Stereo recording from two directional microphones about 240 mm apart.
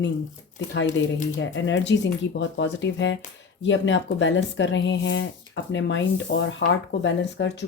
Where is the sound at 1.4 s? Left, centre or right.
Left.